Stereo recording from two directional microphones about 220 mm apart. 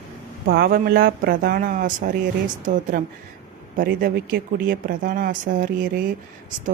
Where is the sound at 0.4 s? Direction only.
45° right (ahead or behind).